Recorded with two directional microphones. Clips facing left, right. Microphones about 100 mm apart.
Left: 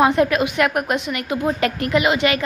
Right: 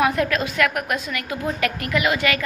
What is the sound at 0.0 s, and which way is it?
A woman's voice, 25° left (ahead or behind).